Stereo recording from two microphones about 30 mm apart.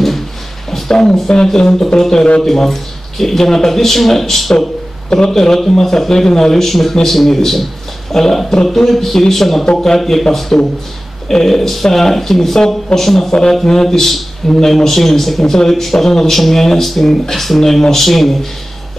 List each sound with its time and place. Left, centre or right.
0.7 s a sound: centre
0.9 s speech: centre
10.5 s speech: centre